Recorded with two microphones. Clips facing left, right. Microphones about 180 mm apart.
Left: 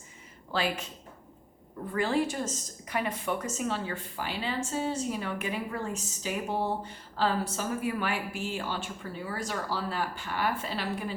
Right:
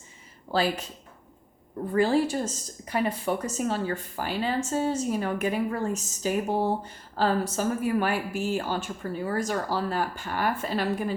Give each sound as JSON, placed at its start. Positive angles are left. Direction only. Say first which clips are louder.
{"t": 0.5, "sound": "a woman's voice", "louder": "right 5 dB", "side_deg": -35}
{"t": 1.9, "sound": "speech", "louder": "right 5 dB", "side_deg": -35}